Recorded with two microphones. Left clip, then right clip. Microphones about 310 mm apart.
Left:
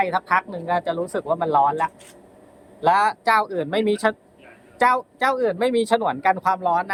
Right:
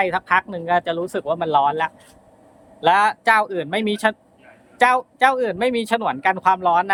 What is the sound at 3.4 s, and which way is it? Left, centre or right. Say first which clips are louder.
Speech: right 1 dB; right.